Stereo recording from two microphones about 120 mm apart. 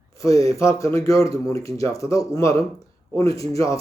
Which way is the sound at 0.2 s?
25° left (ahead or behind).